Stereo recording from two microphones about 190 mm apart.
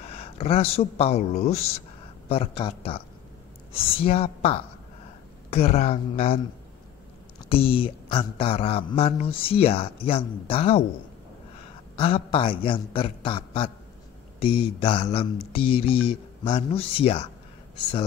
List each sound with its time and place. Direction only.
0.0 s a woman's voice: 30° left (ahead or behind)
12.0 s speech: 25° left (ahead or behind)